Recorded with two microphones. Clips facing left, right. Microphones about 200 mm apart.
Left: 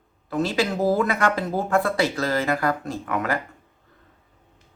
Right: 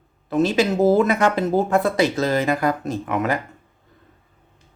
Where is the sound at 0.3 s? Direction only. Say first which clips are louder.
Right 5 dB; 20° right (ahead or behind).